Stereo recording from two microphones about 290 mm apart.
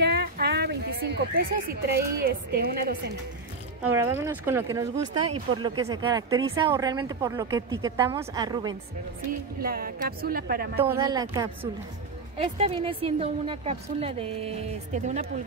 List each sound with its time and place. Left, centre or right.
0.0 s speech: right
3.9 s speech: centre
5.2 s speech: right
5.9 s speech: centre
9.6 s a woman's voice: right
10.9 s a woman's voice: centre